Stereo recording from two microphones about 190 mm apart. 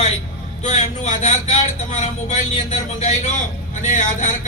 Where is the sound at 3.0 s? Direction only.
35° left (ahead or behind).